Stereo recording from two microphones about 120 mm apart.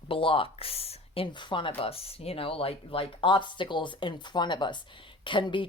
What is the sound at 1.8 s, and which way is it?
Speech, 55° left (ahead or behind).